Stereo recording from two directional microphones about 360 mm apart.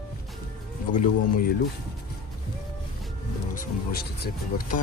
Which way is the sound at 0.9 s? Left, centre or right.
Left.